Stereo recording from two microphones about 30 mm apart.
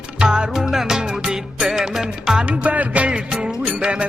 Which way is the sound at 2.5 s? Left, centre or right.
Right.